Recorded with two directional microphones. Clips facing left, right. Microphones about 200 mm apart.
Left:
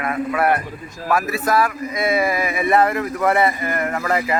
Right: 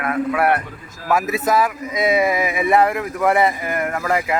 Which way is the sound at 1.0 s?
20° right (ahead or behind).